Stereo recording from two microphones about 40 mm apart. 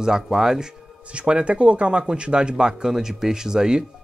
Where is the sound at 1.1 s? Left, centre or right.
Right.